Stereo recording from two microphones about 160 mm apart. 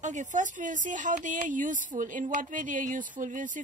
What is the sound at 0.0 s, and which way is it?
Speech, 50° right (ahead or behind).